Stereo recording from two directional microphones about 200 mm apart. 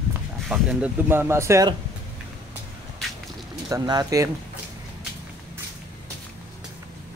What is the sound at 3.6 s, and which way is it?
Speech, 15° right (ahead or behind).